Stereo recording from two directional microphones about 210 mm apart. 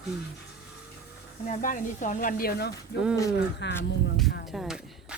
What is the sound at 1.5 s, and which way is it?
Speech, 40° left (ahead or behind).